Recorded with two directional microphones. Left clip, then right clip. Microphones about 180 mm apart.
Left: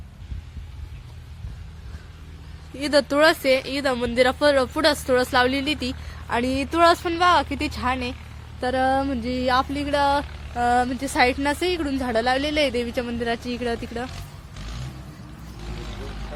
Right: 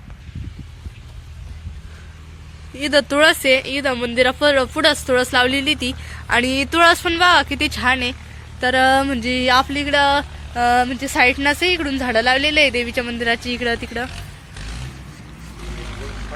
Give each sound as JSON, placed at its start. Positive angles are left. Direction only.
{"t": 2.7, "sound": "speech", "side_deg": 5}